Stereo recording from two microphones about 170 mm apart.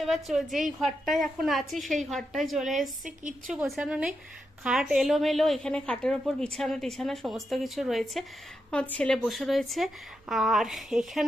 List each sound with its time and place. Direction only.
0.0 s a woman's voice: centre (ahead or behind)